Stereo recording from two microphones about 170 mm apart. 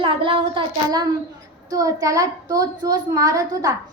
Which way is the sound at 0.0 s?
30° right (ahead or behind).